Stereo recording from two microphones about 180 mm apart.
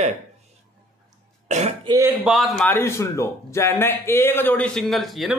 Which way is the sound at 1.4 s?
40° right (ahead or behind).